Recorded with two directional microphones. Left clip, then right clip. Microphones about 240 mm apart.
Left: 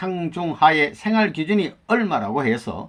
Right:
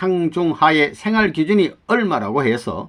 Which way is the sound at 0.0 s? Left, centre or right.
Right.